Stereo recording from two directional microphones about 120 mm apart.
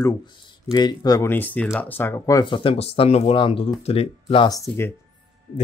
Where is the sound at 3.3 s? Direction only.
45° left (ahead or behind).